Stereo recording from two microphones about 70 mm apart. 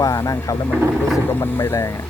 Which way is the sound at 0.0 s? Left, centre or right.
Left.